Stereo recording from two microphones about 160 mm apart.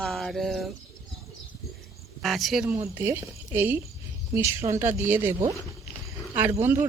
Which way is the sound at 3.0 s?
15° right (ahead or behind).